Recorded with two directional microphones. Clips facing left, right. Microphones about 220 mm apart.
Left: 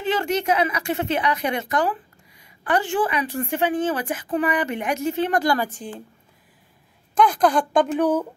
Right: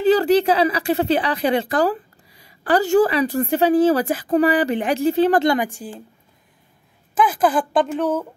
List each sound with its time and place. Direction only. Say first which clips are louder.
0.0 s a woman's voice: right 8 dB; 35° right (ahead or behind)
5.7 s a woman's voice: right 1 dB; 10° right (ahead or behind)
7.2 s a woman's voice: even; 5° right (ahead or behind)